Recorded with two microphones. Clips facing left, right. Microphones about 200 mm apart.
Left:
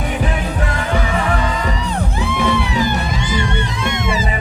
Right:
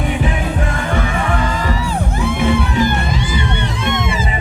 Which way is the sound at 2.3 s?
50° right (ahead or behind).